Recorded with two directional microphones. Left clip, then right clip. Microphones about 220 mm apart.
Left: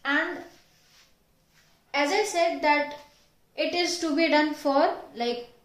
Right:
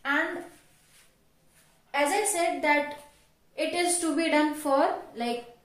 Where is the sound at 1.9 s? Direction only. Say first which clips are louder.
Left 1 dB; 35° left (ahead or behind).